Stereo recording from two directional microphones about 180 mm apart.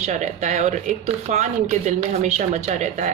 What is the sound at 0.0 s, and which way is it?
Speech, 40° right (ahead or behind).